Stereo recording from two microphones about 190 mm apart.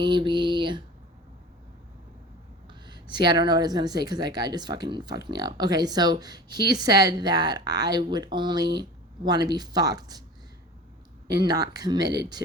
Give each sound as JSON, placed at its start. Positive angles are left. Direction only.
{"t": 0.0, "sound": "a sound", "side_deg": -25}
{"t": 2.6, "sound": "a woman's voice", "side_deg": -25}
{"t": 11.3, "sound": "a woman's voice", "side_deg": -20}